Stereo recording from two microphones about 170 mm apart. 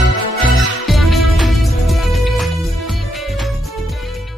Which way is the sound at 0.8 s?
Centre (ahead or behind).